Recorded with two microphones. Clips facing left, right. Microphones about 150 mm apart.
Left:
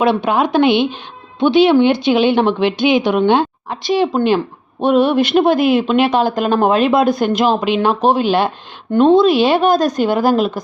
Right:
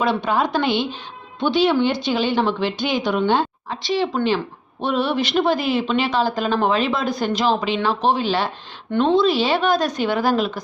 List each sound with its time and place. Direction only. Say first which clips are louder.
0.0 s a woman's voice: left 5 dB; 60° left (ahead or behind)
3.8 s speech: left 6 dB; 45° left (ahead or behind)